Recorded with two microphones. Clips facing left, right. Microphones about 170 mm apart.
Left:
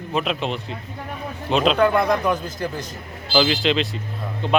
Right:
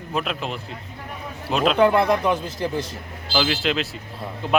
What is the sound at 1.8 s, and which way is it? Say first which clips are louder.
A man's voice: right 1 dB; 30° right (ahead or behind).